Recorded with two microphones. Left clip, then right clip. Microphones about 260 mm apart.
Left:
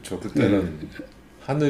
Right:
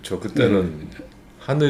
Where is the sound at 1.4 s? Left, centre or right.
Right.